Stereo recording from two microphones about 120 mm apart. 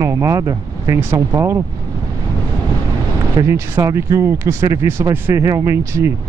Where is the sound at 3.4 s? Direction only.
25° right (ahead or behind).